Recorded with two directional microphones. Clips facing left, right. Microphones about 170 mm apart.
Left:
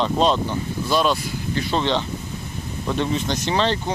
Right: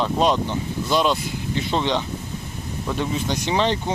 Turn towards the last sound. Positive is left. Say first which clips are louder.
# even
turn(degrees=-15)  # may be behind; listen again after turning